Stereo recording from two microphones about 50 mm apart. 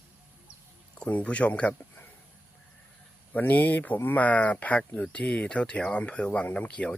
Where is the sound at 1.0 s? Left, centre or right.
Left.